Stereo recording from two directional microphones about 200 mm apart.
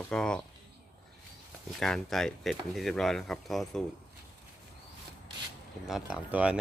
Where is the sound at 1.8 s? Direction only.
Centre (ahead or behind).